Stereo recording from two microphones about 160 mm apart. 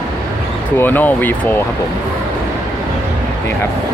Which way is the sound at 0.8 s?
10° left (ahead or behind).